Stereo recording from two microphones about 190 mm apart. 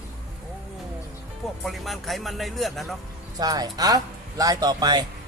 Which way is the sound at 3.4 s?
20° right (ahead or behind).